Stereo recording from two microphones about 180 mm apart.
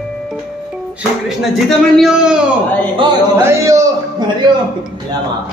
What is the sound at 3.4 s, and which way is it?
A man's voice, 15° right (ahead or behind).